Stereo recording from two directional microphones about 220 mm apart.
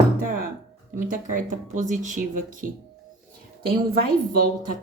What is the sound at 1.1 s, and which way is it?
Speech, 35° right (ahead or behind).